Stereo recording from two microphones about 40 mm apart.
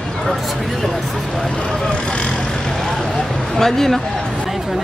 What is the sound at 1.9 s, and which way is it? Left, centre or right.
Speech, left.